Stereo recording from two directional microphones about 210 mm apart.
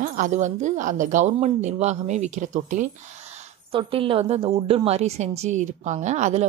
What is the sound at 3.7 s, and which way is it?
A woman's voice, 25° right (ahead or behind).